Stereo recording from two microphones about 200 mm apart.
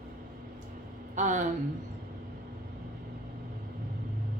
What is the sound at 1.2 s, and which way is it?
Speech, 35° right (ahead or behind).